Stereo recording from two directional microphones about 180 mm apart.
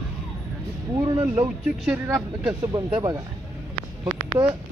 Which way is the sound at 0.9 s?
20° right (ahead or behind).